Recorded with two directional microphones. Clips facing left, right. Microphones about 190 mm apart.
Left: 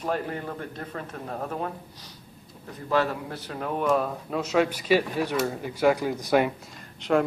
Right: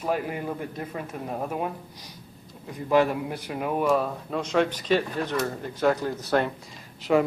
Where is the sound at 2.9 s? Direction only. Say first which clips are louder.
Right 4 dB; 15° right (ahead or behind); by 6.5 s 10° left (ahead or behind).